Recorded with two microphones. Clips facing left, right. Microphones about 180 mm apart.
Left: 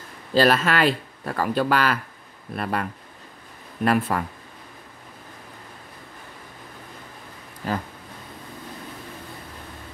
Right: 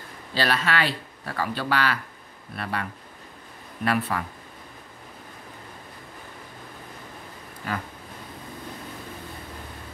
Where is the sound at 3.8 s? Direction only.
45° left (ahead or behind).